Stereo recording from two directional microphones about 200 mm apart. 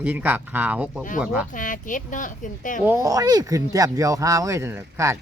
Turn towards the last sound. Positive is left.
turn(degrees=-15)  # may be behind; listen again after turning